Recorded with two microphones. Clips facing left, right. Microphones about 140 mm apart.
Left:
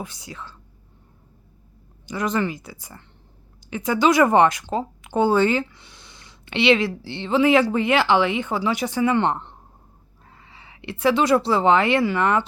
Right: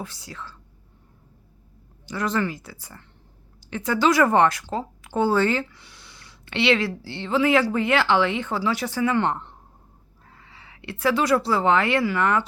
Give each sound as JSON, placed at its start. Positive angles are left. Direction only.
{"t": 0.0, "sound": "speech", "side_deg": 15}
{"t": 2.0, "sound": "speech", "side_deg": 15}